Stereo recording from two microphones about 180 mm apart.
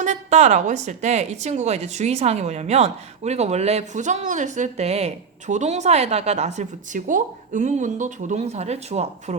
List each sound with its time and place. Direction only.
0.0 s a woman's voice: 40° right (ahead or behind)